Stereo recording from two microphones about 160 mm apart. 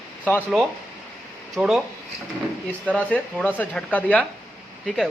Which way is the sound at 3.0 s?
10° left (ahead or behind).